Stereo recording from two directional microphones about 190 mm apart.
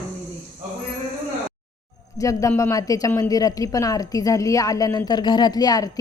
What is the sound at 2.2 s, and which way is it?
Speech, 15° left (ahead or behind).